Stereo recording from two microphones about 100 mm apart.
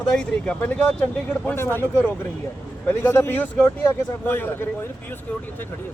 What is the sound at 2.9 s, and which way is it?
Speech, 20° left (ahead or behind).